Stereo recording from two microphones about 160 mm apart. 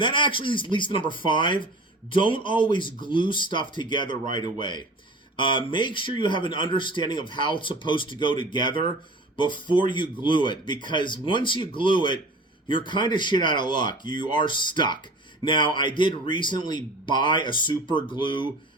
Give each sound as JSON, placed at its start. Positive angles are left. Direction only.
{"t": 0.0, "sound": "a man's voice", "side_deg": 30}